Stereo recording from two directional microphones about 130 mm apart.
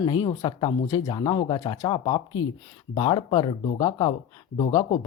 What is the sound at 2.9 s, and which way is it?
Speech, 40° left (ahead or behind).